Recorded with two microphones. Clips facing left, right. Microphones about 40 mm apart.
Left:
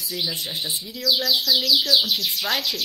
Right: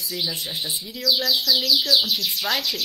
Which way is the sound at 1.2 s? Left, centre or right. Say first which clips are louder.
Left 1 dB; centre.